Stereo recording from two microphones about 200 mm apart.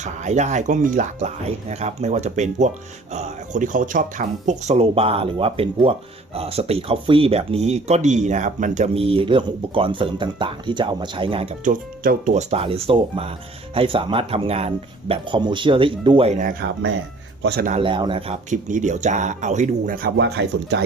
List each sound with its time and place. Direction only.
0.0 s speech: 35° right (ahead or behind)
17.4 s speech: 55° right (ahead or behind)
17.7 s speech: 25° right (ahead or behind)
18.5 s speech: 40° right (ahead or behind)
20.1 s speech: 60° right (ahead or behind)